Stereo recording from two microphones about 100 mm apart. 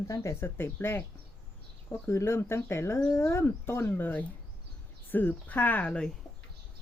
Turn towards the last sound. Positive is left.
turn(degrees=10)  # may be behind; listen again after turning